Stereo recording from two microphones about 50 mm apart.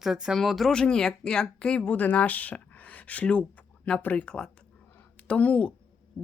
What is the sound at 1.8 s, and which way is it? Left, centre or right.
Speech, left.